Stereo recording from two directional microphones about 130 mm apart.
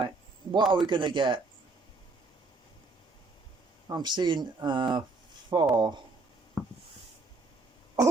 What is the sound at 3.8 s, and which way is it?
Speech, 35° right (ahead or behind).